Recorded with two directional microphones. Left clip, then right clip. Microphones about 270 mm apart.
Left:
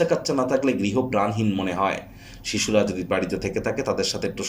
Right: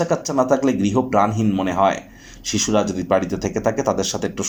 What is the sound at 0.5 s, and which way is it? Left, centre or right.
Speech, right.